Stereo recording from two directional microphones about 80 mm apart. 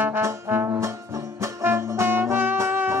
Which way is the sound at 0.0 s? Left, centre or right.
Right.